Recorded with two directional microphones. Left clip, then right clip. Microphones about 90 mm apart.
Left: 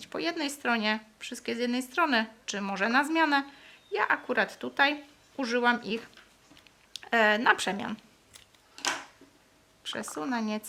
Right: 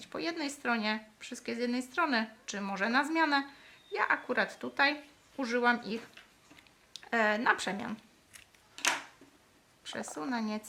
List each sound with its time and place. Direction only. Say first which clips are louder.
0.0 s speech: left 4 dB; 25° left (ahead or behind)
9.8 s speech: left 4 dB; 25° left (ahead or behind)